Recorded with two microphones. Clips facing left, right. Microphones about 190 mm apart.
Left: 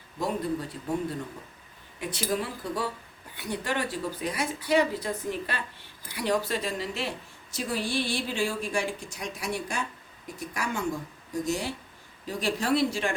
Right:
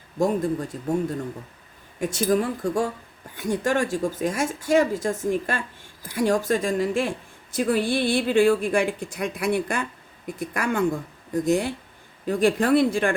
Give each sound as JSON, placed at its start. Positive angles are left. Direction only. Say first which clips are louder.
{"t": 0.2, "sound": "a woman's voice", "louder": "right 7 dB", "side_deg": -45}